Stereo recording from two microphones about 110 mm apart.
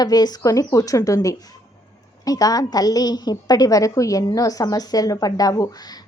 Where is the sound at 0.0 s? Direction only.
35° left (ahead or behind).